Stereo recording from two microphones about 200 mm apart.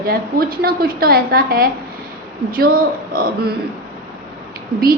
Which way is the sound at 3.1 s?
50° right (ahead or behind).